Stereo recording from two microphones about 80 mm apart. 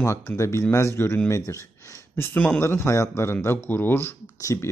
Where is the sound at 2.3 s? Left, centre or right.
Centre.